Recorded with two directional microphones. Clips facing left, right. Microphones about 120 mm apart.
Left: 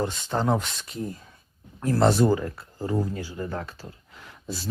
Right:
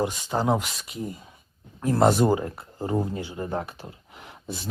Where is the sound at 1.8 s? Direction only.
15° right (ahead or behind).